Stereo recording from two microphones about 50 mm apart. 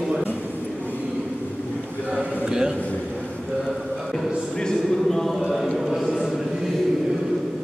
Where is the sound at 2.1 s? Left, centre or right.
Right.